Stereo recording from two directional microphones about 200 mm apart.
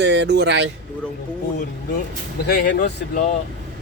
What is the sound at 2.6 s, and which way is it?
Speech, 45° left (ahead or behind).